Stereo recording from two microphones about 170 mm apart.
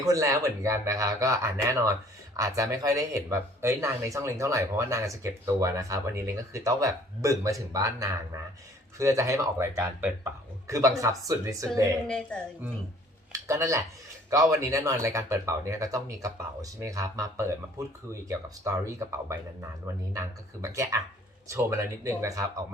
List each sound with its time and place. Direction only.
0.0 s speech: 20° right (ahead or behind)
12.0 s speech: 5° left (ahead or behind)
13.3 s speech: 20° right (ahead or behind)